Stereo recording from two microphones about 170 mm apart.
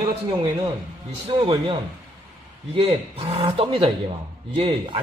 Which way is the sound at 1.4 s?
30° right (ahead or behind).